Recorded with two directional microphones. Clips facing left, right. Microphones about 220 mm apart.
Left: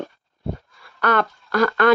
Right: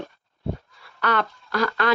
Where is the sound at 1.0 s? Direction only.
50° left (ahead or behind).